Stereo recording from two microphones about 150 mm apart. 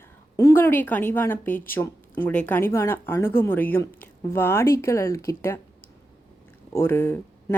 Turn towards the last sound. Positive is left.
turn(degrees=15)  # may be behind; listen again after turning